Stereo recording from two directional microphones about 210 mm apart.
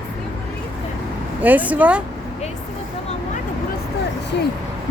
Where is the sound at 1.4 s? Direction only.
5° right (ahead or behind).